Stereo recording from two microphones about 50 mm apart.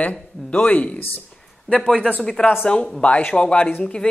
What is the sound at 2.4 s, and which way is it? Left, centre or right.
Speech, left.